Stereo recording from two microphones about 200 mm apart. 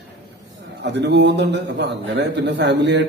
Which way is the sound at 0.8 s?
60° right (ahead or behind).